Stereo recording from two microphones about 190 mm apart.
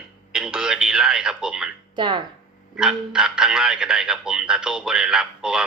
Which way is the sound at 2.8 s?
5° right (ahead or behind).